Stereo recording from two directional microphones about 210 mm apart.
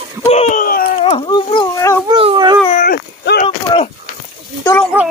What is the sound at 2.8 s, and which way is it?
Dog, 50° left (ahead or behind).